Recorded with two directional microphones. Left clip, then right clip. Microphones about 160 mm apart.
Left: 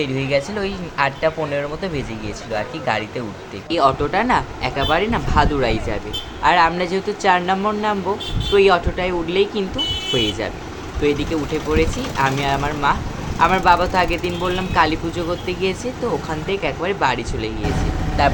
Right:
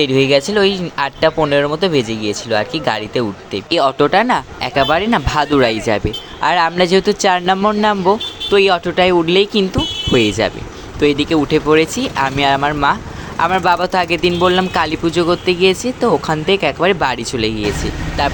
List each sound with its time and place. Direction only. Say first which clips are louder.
0.0 s speech: right 8 dB; 55° right (ahead or behind)